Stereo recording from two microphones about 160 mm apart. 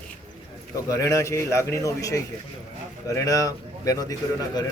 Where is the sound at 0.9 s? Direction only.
20° left (ahead or behind).